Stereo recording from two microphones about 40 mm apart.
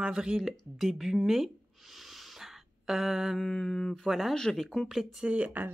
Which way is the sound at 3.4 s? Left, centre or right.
Centre.